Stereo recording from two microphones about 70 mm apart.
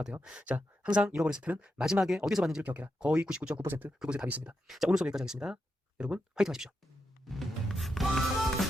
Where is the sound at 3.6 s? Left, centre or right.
Right.